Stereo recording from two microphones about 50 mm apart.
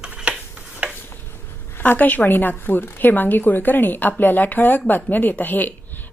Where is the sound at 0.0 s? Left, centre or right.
Centre.